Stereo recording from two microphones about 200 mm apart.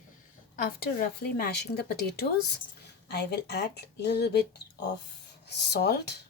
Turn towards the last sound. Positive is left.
turn(degrees=55)  # may be behind; listen again after turning